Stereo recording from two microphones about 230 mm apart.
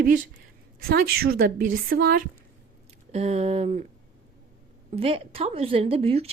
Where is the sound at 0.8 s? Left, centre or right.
Right.